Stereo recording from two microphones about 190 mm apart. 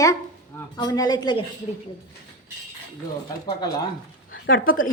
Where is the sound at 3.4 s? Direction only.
20° left (ahead or behind).